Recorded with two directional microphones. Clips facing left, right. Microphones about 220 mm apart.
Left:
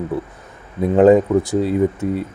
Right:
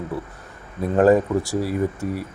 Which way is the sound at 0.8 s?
20° left (ahead or behind).